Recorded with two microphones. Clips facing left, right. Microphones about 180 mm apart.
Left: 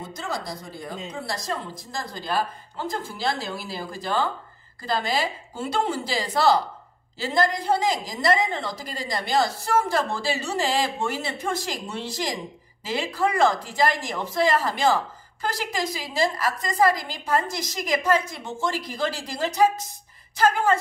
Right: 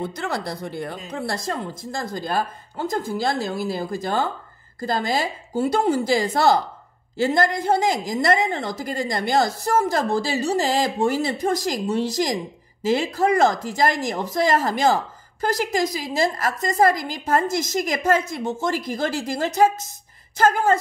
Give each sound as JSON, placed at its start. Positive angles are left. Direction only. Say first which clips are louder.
{"t": 0.0, "sound": "speech", "louder": "right 5 dB", "side_deg": -65}
{"t": 1.1, "sound": "a woman's voice", "louder": "right 4 dB", "side_deg": -55}